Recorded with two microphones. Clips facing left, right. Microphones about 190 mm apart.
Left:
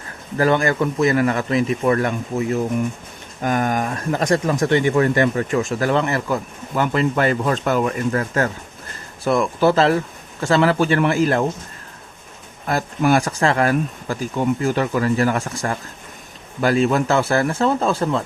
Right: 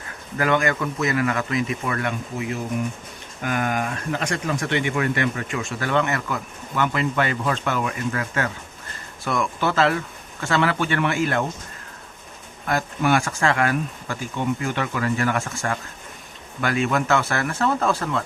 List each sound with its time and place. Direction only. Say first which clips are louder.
0.3 s speech: left 4 dB; 35° left (ahead or behind)
12.6 s a man's voice: left 3 dB; 35° left (ahead or behind)